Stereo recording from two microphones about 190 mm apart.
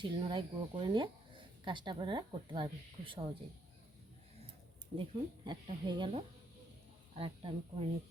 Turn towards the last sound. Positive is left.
turn(degrees=-30)  # may be behind; listen again after turning